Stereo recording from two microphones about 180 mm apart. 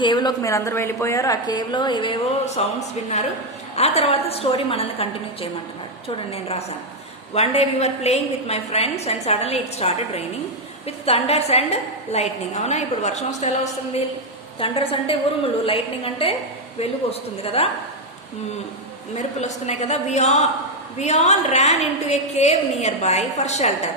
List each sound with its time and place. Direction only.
0.0 s a woman's voice: 25° left (ahead or behind)
2.6 s a woman's voice: 35° left (ahead or behind)
3.8 s a woman's voice: 35° left (ahead or behind)
7.3 s a woman's voice: 35° left (ahead or behind)
14.6 s a woman's voice: 30° left (ahead or behind)
19.1 s a woman's voice: 35° left (ahead or behind)